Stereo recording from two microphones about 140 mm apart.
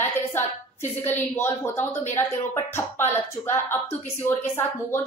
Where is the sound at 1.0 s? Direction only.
15° left (ahead or behind).